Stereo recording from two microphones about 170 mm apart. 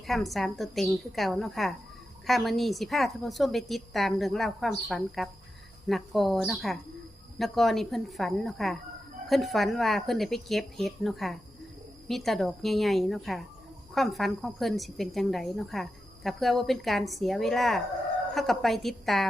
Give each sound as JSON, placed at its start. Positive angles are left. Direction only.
{"t": 0.1, "sound": "a woman's voice", "side_deg": 0}